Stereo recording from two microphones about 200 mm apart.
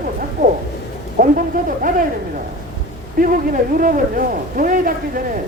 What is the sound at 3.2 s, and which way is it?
Speech, 45° right (ahead or behind).